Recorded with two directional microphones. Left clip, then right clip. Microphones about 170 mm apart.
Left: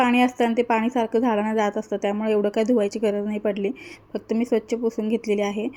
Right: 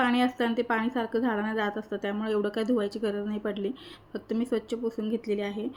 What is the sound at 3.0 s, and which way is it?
Speech, 20° left (ahead or behind).